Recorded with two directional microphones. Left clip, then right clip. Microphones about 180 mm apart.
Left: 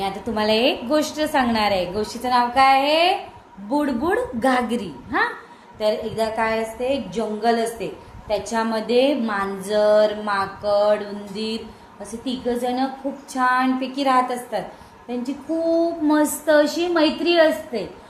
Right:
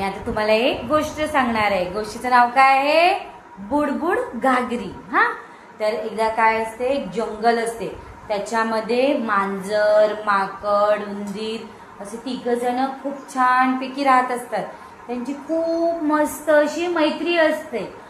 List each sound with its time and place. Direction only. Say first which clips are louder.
0.0 s a woman's voice: right 1 dB; 45° left (ahead or behind)
16.1 s a woman's voice: left 1 dB; 55° left (ahead or behind)